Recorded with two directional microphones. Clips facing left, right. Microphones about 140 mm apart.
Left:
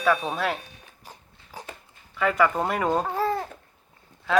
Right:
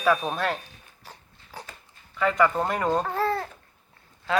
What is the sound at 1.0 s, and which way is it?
Dog, 15° left (ahead or behind).